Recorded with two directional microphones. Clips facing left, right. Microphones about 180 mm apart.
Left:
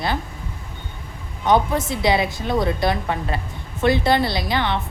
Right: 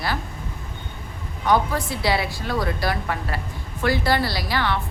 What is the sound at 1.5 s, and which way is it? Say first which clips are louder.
Speech: left 3 dB; 20° left (ahead or behind).